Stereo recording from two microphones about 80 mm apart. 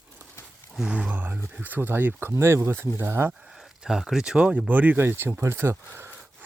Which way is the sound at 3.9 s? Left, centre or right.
Centre.